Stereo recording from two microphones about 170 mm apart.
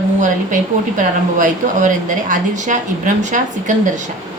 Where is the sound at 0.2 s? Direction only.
50° right (ahead or behind).